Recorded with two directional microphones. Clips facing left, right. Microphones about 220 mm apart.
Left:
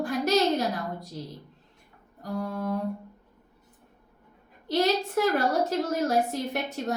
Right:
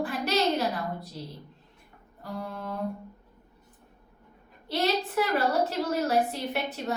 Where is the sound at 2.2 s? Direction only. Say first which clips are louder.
Left 5 dB; 45° left (ahead or behind).